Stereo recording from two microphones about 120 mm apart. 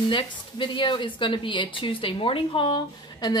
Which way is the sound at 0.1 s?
45° left (ahead or behind).